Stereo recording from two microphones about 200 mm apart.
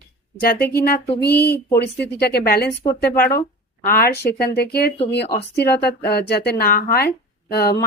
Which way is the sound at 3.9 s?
50° left (ahead or behind).